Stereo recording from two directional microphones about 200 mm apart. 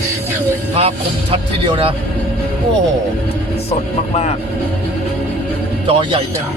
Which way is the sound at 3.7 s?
30° left (ahead or behind).